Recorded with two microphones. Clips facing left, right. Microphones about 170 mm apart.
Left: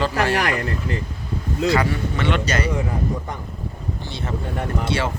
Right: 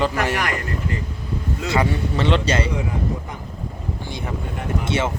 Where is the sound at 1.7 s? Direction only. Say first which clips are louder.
Right 3 dB; 25° right (ahead or behind).